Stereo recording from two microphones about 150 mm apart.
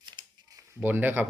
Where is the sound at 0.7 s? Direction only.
15° right (ahead or behind).